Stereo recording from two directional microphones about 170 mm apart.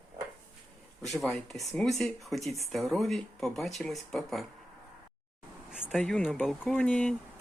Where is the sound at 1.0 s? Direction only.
Centre (ahead or behind).